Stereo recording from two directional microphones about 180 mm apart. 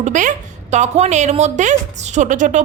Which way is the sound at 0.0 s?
45° right (ahead or behind).